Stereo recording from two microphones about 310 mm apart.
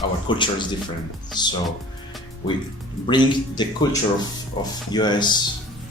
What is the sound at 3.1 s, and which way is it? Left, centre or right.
Speech, centre.